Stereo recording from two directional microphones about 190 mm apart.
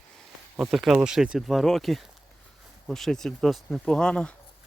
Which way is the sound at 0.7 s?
Centre (ahead or behind).